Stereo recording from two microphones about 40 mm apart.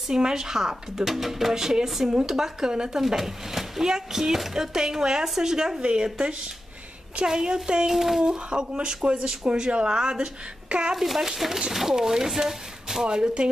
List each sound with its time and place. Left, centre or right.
0.1 s speech: centre
5.8 s speech: right
7.2 s speech: centre
7.9 s speech: centre
8.2 s speech: right
9.5 s speech: right
11.0 s speech: centre